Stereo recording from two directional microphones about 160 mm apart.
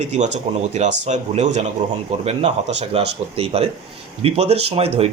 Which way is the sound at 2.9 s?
40° right (ahead or behind).